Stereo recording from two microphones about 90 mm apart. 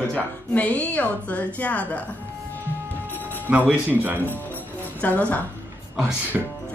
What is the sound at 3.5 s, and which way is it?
Speech, 15° right (ahead or behind).